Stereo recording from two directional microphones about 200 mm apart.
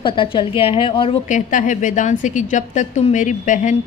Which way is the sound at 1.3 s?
40° left (ahead or behind).